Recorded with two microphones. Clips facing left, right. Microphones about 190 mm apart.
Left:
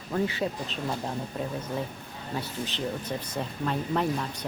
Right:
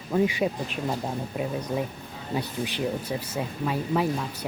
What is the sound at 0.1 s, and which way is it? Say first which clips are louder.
Speech: right 4 dB; 15° right (ahead or behind).